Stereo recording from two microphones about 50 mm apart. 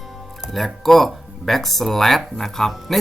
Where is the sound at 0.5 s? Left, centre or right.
Centre.